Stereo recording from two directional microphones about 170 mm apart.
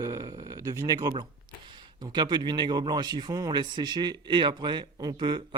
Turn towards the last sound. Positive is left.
turn(degrees=-25)  # may be behind; listen again after turning